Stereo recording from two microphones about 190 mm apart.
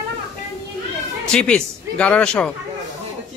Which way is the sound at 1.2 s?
5° left (ahead or behind).